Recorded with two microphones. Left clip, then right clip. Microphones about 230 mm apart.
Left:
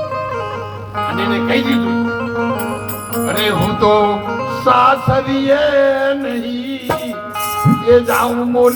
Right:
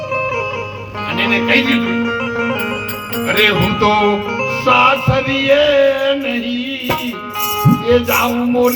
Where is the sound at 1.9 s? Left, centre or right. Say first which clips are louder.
Right 1 dB; left.